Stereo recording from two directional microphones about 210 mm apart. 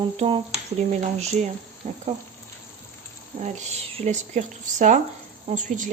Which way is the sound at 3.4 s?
30° right (ahead or behind).